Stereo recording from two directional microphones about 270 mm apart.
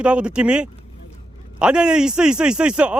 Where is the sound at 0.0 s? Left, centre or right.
Centre.